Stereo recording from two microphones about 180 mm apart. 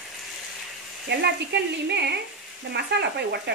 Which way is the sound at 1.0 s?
70° right (ahead or behind).